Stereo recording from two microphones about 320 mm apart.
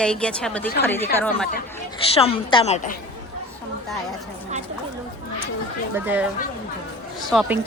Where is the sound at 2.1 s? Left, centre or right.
Centre.